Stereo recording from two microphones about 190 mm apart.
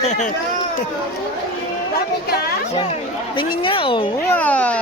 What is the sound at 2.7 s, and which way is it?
Speech, 25° left (ahead or behind).